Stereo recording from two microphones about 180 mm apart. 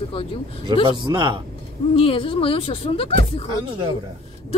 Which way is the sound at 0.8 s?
25° right (ahead or behind).